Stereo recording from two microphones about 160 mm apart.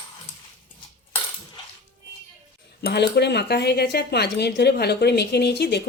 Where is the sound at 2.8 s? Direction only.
90° left.